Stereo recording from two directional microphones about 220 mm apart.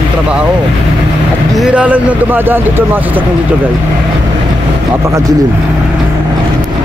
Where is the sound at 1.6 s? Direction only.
5° right (ahead or behind).